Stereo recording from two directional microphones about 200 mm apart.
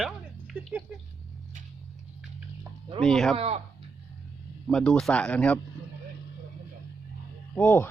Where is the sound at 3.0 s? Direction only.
Centre (ahead or behind).